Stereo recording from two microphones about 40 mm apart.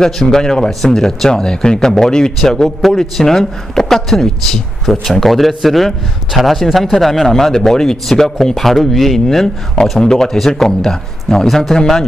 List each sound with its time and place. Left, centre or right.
0.0 s a man's voice: centre
9.9 s a man's voice: centre
11.7 s a man's voice: centre